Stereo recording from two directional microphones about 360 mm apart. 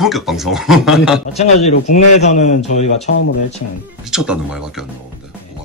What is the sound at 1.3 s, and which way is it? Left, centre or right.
A man's voice, centre.